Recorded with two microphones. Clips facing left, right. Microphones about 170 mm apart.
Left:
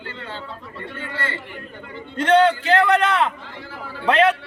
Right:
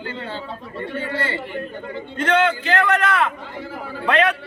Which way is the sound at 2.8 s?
30° left (ahead or behind).